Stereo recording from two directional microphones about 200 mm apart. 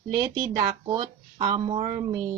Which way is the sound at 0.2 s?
25° right (ahead or behind).